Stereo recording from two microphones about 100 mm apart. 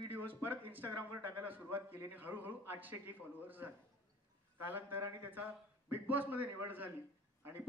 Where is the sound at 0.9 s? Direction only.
20° right (ahead or behind).